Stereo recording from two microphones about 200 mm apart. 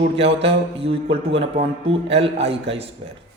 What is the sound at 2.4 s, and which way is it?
Speech, 65° right (ahead or behind).